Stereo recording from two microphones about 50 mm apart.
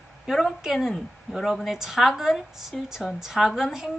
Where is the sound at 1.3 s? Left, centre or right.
Centre.